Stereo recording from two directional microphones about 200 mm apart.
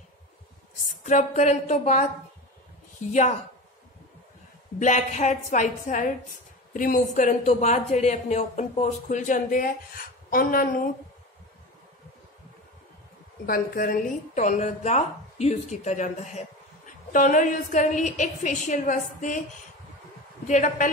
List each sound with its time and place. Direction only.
0.8 s a woman's voice: 40° left (ahead or behind)
3.1 s a woman's voice: 35° left (ahead or behind)
4.7 s a woman's voice: 40° left (ahead or behind)
13.5 s a woman's voice: 45° left (ahead or behind)
20.4 s a woman's voice: 40° left (ahead or behind)